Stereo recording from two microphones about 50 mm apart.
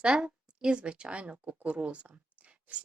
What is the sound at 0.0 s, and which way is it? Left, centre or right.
Speech, right.